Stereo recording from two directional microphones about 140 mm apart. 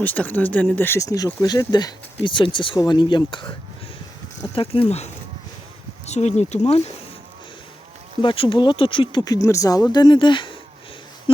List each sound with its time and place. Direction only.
0.0 s speech: 10° left (ahead or behind); by 3.5 s 35° left (ahead or behind)
4.5 s speech: 40° left (ahead or behind)
8.2 s speech: 35° left (ahead or behind)
9.2 s speech: 25° left (ahead or behind)